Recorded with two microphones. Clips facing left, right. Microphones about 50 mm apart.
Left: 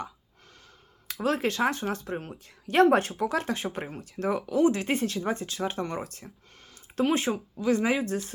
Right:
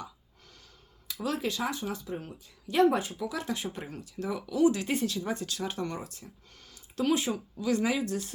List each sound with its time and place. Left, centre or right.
1.0 s speech: left
6.1 s speech: left
6.6 s speech: left